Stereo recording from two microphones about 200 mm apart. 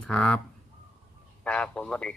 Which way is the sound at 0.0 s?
5° left (ahead or behind).